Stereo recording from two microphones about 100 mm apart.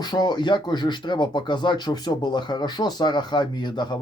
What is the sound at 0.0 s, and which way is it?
Speech, 45° left (ahead or behind).